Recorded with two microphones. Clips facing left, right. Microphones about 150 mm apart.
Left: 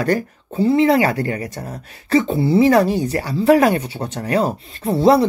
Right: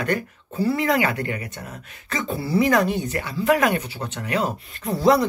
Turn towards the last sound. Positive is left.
turn(degrees=30)  # may be behind; listen again after turning